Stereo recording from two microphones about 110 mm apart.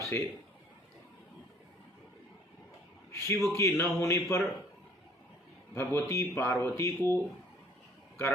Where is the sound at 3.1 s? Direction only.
25° left (ahead or behind).